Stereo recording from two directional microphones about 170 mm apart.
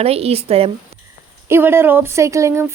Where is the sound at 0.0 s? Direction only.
35° right (ahead or behind).